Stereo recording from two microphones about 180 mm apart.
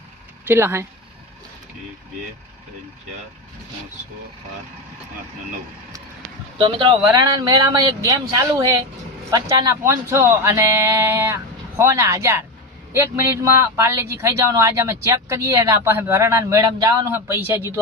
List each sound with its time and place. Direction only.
0.4 s speech: 15° right (ahead or behind)
6.6 s speech: 30° right (ahead or behind); by 17.7 s 10° right (ahead or behind)